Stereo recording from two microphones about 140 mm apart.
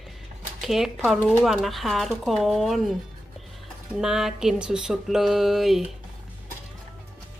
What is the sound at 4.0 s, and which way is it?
A woman's voice, 5° right (ahead or behind).